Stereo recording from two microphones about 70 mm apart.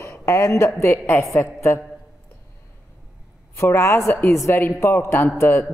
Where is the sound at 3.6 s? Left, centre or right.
Left.